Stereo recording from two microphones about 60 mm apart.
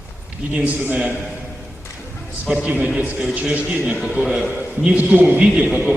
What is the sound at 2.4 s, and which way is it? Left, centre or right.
A man's voice, centre.